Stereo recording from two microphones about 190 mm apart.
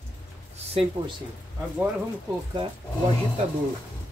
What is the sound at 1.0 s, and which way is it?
Speech, 25° right (ahead or behind).